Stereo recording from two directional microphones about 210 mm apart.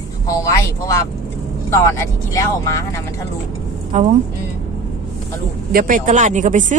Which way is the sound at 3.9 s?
35° right (ahead or behind).